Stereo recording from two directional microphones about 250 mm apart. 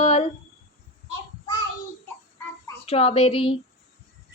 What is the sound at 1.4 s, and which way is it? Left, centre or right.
Child singing, centre.